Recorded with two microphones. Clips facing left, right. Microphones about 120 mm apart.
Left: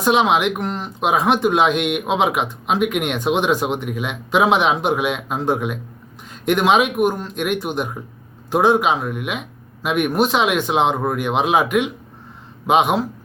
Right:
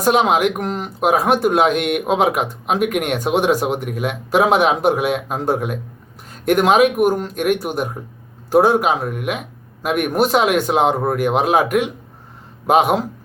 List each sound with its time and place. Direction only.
0.0 s speech: 45° right (ahead or behind)